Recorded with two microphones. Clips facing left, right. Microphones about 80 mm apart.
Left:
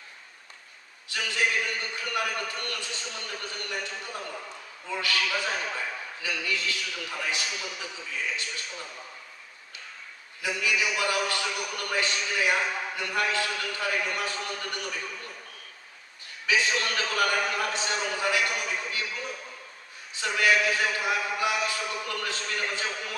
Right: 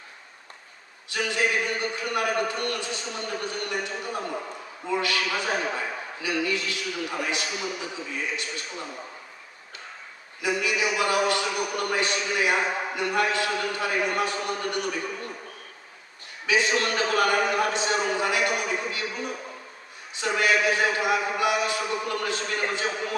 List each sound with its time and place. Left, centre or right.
1.1 s a man's voice: right
10.4 s a man's voice: right
16.5 s a man's voice: right